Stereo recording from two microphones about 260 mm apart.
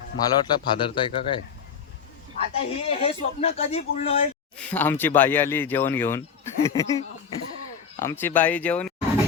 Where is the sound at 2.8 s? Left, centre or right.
Left.